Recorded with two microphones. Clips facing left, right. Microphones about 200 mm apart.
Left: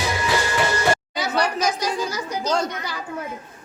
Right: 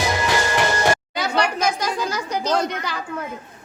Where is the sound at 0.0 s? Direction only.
45° right (ahead or behind).